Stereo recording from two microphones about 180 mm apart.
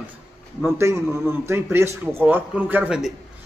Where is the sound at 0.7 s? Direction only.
15° right (ahead or behind).